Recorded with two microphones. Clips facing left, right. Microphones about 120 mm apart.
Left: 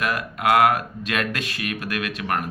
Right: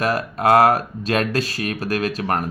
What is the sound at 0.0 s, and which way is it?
Speech, 35° right (ahead or behind).